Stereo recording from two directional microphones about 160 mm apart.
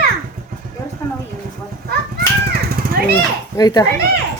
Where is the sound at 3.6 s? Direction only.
25° left (ahead or behind).